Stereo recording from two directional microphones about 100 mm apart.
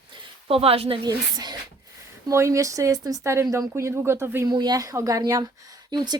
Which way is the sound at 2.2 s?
30° right (ahead or behind).